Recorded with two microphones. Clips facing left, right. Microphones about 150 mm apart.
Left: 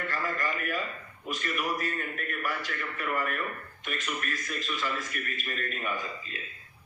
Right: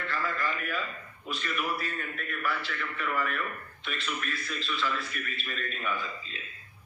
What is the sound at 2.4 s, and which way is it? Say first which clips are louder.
Speech: right 2 dB; 15° left (ahead or behind).